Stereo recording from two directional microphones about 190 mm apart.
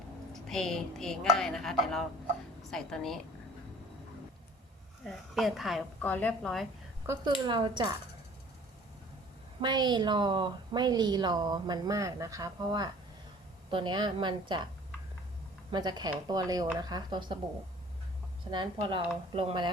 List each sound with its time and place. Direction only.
0.3 s speech: centre (ahead or behind)
5.0 s a woman's voice: centre (ahead or behind)
7.1 s speech: 10° right (ahead or behind)
7.4 s a woman's voice: 25° right (ahead or behind)
9.6 s a woman's voice: 25° right (ahead or behind)
15.7 s a woman's voice: 20° right (ahead or behind)
18.5 s a woman's voice: 25° right (ahead or behind)